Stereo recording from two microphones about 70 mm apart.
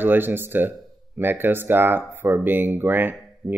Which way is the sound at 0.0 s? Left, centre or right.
Right.